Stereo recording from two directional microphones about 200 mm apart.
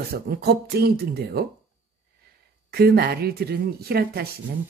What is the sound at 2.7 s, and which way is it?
Speech, 50° right (ahead or behind).